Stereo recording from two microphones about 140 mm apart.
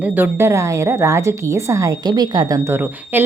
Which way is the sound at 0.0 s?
10° right (ahead or behind).